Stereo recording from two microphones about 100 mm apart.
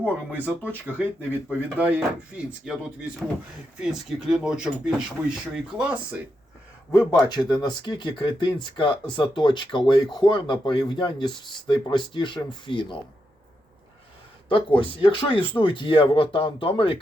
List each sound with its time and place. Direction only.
0.0 s speech: 15° right (ahead or behind)
2.7 s speech: 5° right (ahead or behind)
7.1 s speech: 45° left (ahead or behind)
14.5 s speech: 60° left (ahead or behind)